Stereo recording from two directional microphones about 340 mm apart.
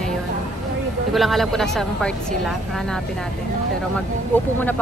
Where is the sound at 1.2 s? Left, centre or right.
Centre.